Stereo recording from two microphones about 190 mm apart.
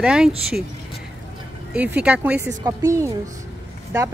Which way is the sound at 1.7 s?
5° right (ahead or behind).